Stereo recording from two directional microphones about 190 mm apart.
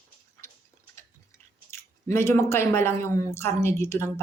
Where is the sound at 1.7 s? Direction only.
15° left (ahead or behind).